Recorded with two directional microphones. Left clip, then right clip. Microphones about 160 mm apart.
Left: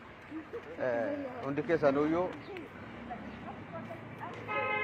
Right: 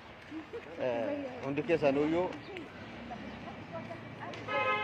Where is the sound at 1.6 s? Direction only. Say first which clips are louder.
Even; 30° right (ahead or behind).